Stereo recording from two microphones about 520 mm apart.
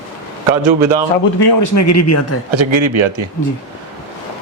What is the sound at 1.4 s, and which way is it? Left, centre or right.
Speech, left.